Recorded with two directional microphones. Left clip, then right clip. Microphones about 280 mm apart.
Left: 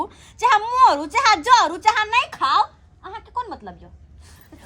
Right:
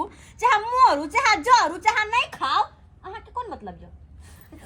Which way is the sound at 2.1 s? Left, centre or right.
Centre.